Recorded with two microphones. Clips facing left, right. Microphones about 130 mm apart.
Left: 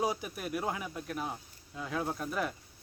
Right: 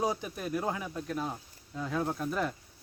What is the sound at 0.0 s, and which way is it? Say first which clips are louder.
Speech: right 1 dB; 10° left (ahead or behind).